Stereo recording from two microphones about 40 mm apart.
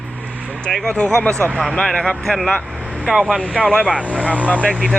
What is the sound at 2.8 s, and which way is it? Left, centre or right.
Vehicle, right.